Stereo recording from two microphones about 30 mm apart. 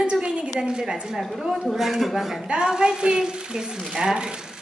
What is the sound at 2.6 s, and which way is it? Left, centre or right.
Speech, right.